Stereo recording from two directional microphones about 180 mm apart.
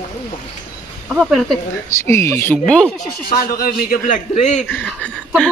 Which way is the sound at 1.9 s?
15° left (ahead or behind).